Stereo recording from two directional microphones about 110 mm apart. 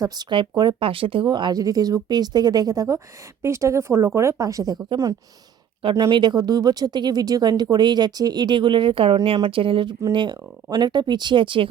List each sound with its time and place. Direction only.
0.0 s speech: 45° right (ahead or behind)
6.1 s speech: 45° right (ahead or behind)